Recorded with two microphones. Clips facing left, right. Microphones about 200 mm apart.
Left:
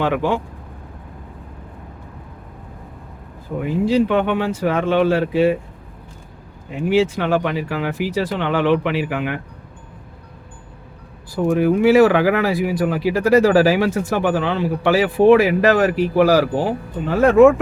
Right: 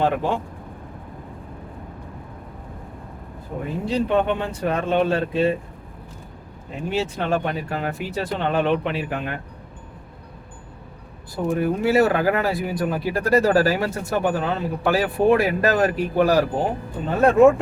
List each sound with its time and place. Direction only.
0.0 s speech: 90° left
3.7 s speech: 90° left
6.9 s speech: 90° left
11.3 s speech: 85° left